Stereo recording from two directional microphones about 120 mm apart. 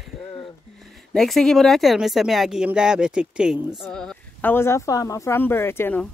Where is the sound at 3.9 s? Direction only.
5° left (ahead or behind).